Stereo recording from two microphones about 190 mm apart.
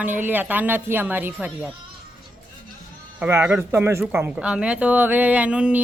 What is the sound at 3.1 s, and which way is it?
A man's voice, 10° right (ahead or behind).